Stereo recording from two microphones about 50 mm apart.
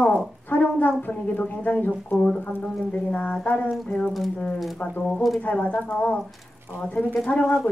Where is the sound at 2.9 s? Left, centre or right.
Left.